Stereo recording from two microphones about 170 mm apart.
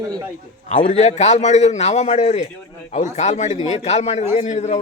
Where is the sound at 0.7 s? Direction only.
45° left (ahead or behind).